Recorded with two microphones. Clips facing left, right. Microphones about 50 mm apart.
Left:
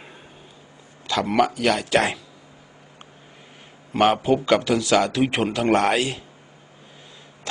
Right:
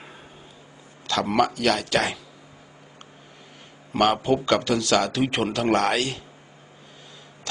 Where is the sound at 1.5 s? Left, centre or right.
Centre.